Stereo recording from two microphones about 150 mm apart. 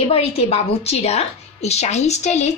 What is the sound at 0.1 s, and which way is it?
A woman's voice, 40° left (ahead or behind).